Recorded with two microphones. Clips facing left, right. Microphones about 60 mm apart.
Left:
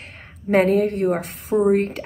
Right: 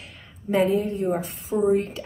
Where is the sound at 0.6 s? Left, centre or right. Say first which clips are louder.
Left 3 dB; left.